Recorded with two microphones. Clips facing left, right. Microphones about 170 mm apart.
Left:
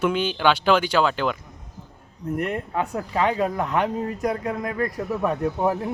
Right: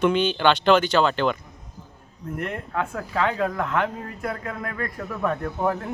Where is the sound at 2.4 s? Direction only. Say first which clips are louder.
Left 1 dB; 15° left (ahead or behind).